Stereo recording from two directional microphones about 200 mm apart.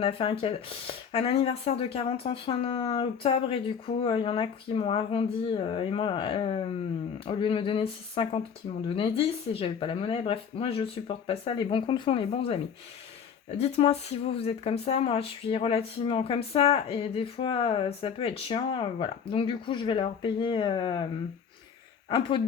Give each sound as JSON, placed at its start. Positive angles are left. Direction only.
{"t": 0.0, "sound": "speech", "side_deg": 30}
{"t": 13.6, "sound": "speech", "side_deg": 30}